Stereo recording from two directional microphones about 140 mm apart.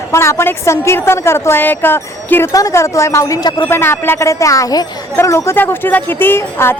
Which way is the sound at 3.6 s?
15° left (ahead or behind).